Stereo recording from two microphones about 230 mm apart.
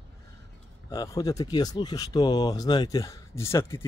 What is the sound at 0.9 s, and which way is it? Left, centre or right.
Speech, centre.